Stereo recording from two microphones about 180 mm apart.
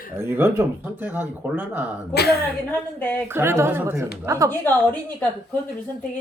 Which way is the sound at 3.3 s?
15° right (ahead or behind).